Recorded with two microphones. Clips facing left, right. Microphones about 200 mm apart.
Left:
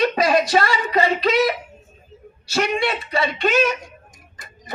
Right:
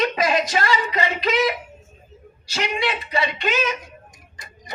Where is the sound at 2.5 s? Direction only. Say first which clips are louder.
Left 4 dB; 50° left (ahead or behind).